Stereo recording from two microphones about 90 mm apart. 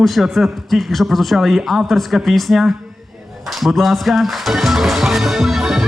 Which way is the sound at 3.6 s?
Centre (ahead or behind).